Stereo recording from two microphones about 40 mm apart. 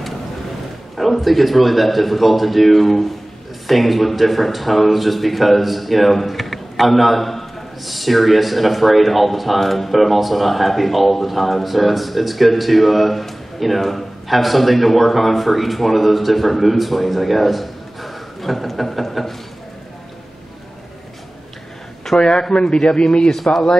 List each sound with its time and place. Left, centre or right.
0.9 s a man's voice: centre
22.2 s a man's voice: left